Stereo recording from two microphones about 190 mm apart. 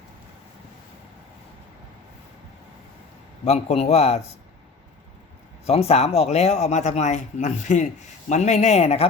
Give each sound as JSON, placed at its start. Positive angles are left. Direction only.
{"t": 3.4, "sound": "a man's voice", "side_deg": 35}
{"t": 5.6, "sound": "a man's voice", "side_deg": 30}